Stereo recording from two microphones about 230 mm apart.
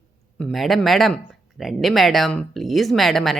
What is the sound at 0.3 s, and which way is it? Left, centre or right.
Speech, centre.